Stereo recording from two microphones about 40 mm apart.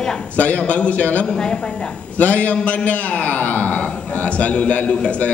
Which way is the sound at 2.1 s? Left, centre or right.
Left.